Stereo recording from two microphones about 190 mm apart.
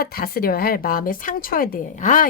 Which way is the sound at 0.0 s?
50° left (ahead or behind).